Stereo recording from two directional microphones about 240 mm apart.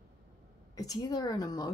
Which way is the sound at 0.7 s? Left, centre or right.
Centre.